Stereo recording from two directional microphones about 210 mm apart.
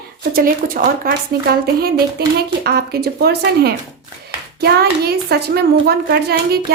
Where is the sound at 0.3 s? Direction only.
40° right (ahead or behind).